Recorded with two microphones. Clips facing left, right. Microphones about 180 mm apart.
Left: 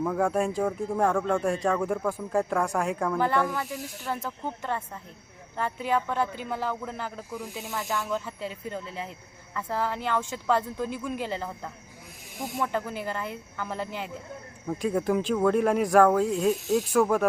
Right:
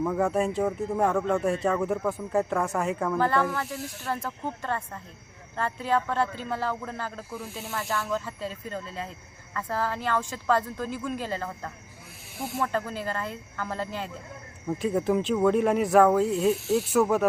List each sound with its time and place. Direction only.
0.0 s speech: centre (ahead or behind)
3.2 s a man's voice: 15° left (ahead or behind)
14.7 s speech: centre (ahead or behind)